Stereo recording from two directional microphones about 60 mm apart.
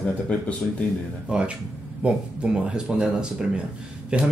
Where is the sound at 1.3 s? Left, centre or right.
Centre.